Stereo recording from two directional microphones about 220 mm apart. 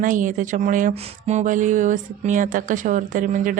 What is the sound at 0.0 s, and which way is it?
Speech, 35° right (ahead or behind).